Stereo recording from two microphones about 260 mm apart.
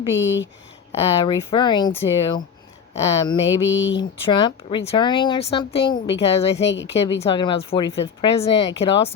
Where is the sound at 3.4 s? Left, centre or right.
Left.